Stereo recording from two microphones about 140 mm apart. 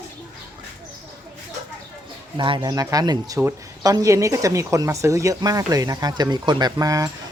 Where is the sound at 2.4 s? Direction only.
35° right (ahead or behind).